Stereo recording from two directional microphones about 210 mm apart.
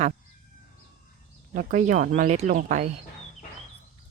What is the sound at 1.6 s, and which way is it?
A woman's voice, 35° right (ahead or behind).